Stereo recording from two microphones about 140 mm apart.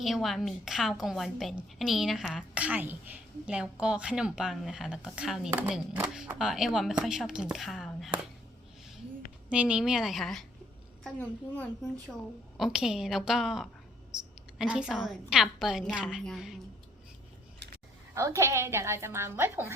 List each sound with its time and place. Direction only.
0.0 s a woman's voice: centre (ahead or behind)
2.6 s a woman's voice: 10° right (ahead or behind)
9.5 s a woman's voice: 10° right (ahead or behind)
11.2 s a woman's voice: 10° left (ahead or behind)
12.5 s a woman's voice: centre (ahead or behind)
18.1 s a woman's voice: 20° right (ahead or behind)